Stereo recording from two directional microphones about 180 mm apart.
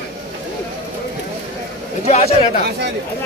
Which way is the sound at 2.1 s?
40° left (ahead or behind).